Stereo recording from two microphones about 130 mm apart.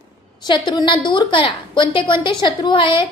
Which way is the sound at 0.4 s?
35° left (ahead or behind).